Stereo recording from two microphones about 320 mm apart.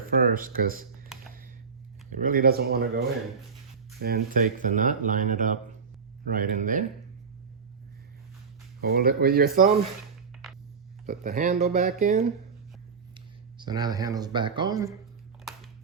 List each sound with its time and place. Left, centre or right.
0.0 s speech: right
2.1 s speech: right
4.0 s speech: right
8.8 s speech: right
11.0 s speech: right
13.6 s speech: centre